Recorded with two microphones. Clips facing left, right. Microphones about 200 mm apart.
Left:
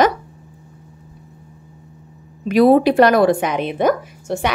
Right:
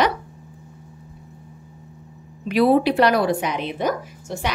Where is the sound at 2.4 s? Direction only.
45° left (ahead or behind).